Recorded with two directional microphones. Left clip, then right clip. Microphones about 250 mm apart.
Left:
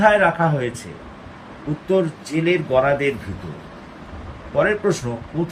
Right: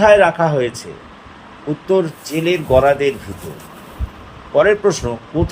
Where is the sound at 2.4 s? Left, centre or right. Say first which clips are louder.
Right 5 dB; right.